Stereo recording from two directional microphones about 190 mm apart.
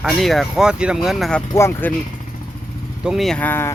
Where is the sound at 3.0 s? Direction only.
Centre (ahead or behind).